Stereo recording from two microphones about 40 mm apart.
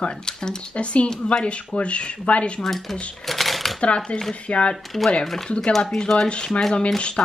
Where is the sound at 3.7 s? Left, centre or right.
Left.